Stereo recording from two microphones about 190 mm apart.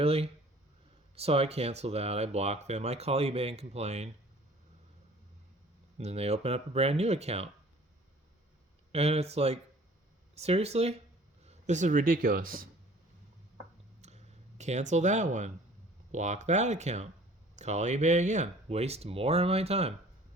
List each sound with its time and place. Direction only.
0.0 s speech: 30° right (ahead or behind)
6.0 s speech: 35° right (ahead or behind)
8.9 s speech: 35° right (ahead or behind); by 12.6 s 50° right (ahead or behind)
14.0 s a sound: 35° right (ahead or behind)
16.1 s speech: 40° right (ahead or behind)